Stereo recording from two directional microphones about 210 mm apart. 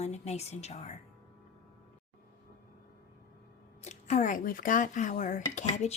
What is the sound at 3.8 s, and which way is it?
Speech, 35° left (ahead or behind).